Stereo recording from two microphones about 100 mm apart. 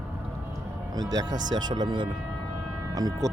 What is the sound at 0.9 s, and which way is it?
Speech, 40° right (ahead or behind).